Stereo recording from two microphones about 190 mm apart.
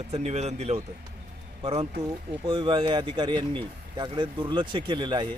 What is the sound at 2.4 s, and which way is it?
A man's voice, 25° right (ahead or behind).